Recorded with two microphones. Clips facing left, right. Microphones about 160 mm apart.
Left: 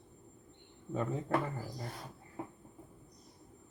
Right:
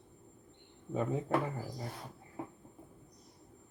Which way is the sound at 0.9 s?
10° right (ahead or behind).